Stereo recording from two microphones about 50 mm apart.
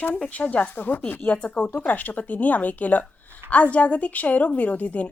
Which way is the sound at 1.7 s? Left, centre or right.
Left.